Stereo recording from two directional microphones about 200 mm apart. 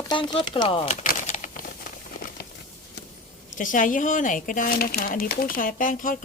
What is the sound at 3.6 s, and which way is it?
Speech, 40° left (ahead or behind).